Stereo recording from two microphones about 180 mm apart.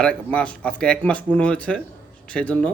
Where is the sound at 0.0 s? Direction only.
5° left (ahead or behind).